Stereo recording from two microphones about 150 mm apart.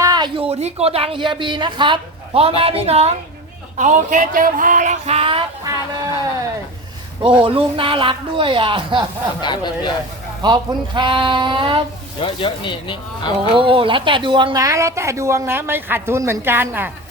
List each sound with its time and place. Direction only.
0.0 s a sound: 25° right (ahead or behind)
0.3 s speech: 40° right (ahead or behind)
3.8 s a sound: 55° right (ahead or behind); by 5.5 s 35° right (ahead or behind)
7.2 s speech: 35° right (ahead or behind)
9.4 s speech: 30° left (ahead or behind)
10.4 s speech: 30° right (ahead or behind)
12.2 s speech: 35° left (ahead or behind)
13.6 s speech: 35° right (ahead or behind); by 16.9 s 15° right (ahead or behind)